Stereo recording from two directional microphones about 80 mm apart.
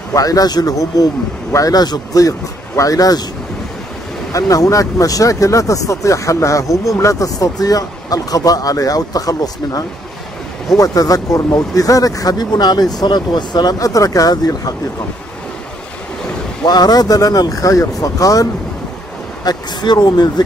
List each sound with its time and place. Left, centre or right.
0.1 s speech: left
4.3 s speech: left
16.6 s speech: left
19.4 s speech: left